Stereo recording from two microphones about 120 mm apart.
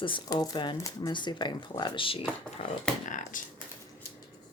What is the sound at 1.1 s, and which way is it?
Speech, 40° left (ahead or behind).